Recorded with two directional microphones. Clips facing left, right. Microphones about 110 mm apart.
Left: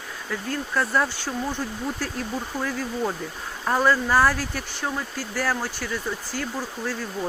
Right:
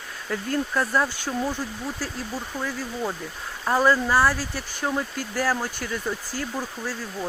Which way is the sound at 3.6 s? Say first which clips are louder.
Right 1 dB; 5° right (ahead or behind).